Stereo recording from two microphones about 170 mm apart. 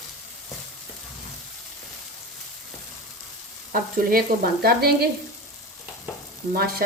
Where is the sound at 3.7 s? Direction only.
60° right (ahead or behind).